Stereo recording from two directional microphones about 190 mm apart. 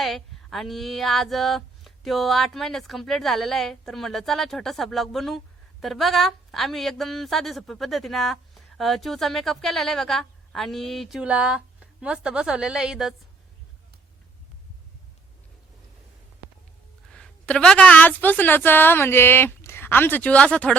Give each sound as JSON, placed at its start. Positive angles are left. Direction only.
{"t": 0.0, "sound": "a woman's voice", "side_deg": 0}
{"t": 17.1, "sound": "a woman's voice", "side_deg": 5}